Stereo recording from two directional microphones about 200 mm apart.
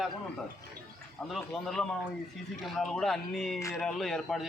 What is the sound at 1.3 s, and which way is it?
A man's voice, centre (ahead or behind).